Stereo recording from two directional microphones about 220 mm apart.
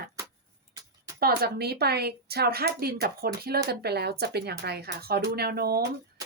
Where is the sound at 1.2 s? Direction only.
45° right (ahead or behind).